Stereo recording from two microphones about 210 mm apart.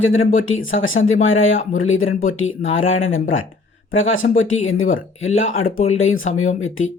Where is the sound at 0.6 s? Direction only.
70° left (ahead or behind).